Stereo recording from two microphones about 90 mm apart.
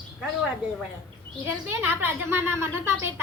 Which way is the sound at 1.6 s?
25° right (ahead or behind).